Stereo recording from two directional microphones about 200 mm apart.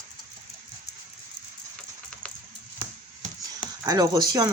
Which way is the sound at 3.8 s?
20° right (ahead or behind).